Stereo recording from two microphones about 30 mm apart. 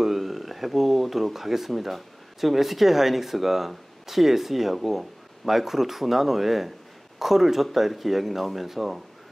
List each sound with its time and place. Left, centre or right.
0.0 s speech: centre